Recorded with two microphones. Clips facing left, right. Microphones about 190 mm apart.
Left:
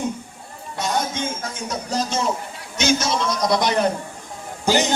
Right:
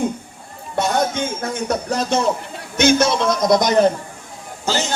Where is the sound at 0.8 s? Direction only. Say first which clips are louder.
Right 5 dB; 60° right (ahead or behind); by 3.8 s 45° right (ahead or behind).